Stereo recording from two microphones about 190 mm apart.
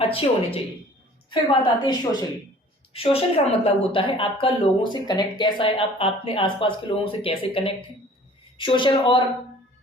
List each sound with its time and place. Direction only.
0.0 s a woman's voice: 30° left (ahead or behind)